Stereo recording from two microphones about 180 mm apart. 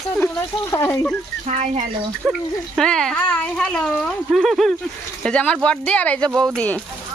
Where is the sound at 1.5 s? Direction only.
40° right (ahead or behind).